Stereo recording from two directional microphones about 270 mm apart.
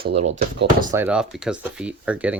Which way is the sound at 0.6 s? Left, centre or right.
Right.